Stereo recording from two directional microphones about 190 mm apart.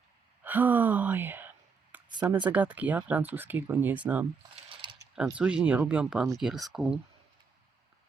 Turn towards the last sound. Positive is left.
turn(degrees=-5)  # may be behind; listen again after turning